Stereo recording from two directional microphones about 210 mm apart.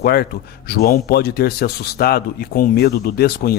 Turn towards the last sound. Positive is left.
turn(degrees=45)  # may be behind; listen again after turning